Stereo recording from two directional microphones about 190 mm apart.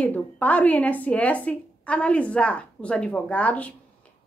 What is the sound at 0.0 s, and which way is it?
A woman's voice, 10° left (ahead or behind).